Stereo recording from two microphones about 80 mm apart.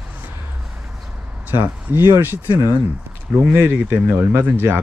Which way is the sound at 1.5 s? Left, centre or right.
Right.